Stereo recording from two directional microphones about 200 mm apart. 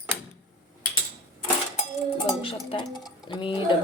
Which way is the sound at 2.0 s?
30° left (ahead or behind).